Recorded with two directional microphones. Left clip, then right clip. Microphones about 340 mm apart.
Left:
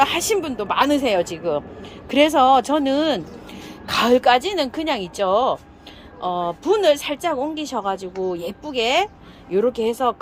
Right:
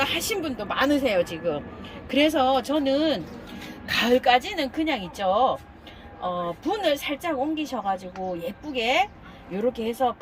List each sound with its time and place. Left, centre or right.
0.0 s speech: centre
0.9 s speech: left
2.0 s speech: centre